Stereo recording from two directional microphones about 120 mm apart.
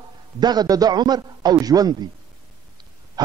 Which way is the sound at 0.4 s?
35° right (ahead or behind).